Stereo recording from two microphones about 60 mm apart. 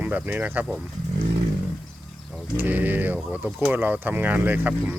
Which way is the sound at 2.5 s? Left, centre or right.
Right.